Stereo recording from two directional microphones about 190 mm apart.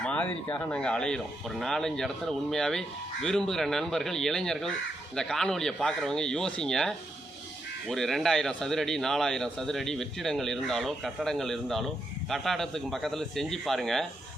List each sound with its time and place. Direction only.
0.0 s speech: 10° left (ahead or behind)